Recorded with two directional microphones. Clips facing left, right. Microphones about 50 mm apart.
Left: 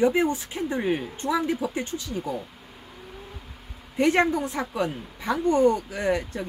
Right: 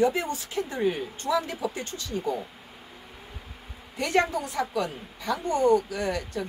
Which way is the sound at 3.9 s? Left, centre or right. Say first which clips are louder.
Left 4 dB; left.